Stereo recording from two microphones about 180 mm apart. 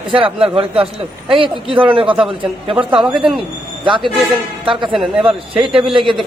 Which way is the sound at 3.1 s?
5° right (ahead or behind).